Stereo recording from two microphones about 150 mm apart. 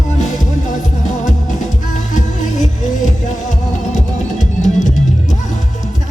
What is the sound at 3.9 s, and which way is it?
Music, 55° left (ahead or behind).